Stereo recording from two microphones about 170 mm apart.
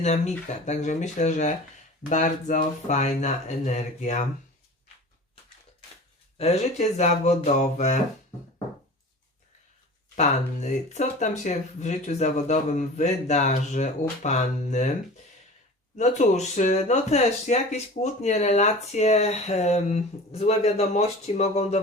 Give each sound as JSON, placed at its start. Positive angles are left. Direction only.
{"t": 0.6, "sound": "speech", "side_deg": 45}
{"t": 6.3, "sound": "speech", "side_deg": 40}
{"t": 10.2, "sound": "speech", "side_deg": 45}
{"t": 16.0, "sound": "speech", "side_deg": 45}